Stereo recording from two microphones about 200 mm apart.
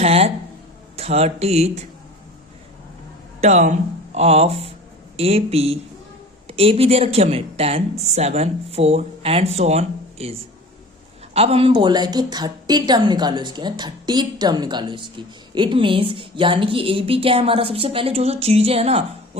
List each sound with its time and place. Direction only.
0.0 s speech: 30° right (ahead or behind)
3.4 s a woman's voice: 35° right (ahead or behind)
11.3 s a woman's voice: 30° right (ahead or behind)